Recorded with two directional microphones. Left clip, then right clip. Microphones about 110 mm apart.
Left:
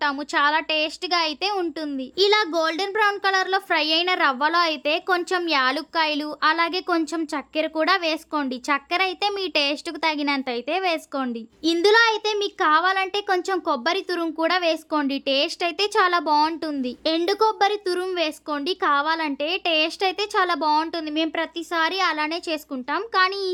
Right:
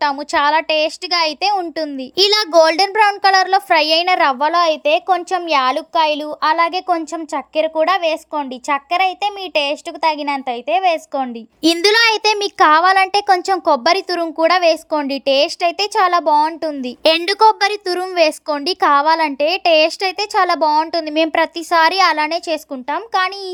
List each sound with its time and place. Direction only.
0.0 s a child's voice: 35° right (ahead or behind)
2.1 s speech: 85° right
2.5 s a child's voice: 55° right (ahead or behind); by 5.4 s 20° right (ahead or behind)
5.5 s a child's voice: 30° right (ahead or behind); by 11.3 s 10° right (ahead or behind)
11.6 s a child's voice: 80° right; by 16.8 s 20° right (ahead or behind)
17.1 s a woman's voice: 65° right (ahead or behind)
18.1 s a child's voice: 45° right (ahead or behind)
21.2 s a child's voice: 60° right (ahead or behind); by 23.3 s 25° right (ahead or behind)